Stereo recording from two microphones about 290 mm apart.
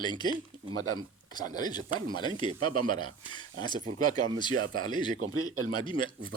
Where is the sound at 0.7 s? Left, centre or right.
Right.